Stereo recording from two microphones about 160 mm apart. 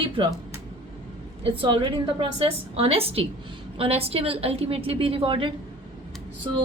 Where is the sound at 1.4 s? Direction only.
35° right (ahead or behind).